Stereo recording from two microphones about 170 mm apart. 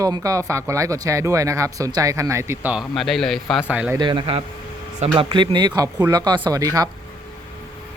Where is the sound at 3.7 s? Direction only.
10° right (ahead or behind).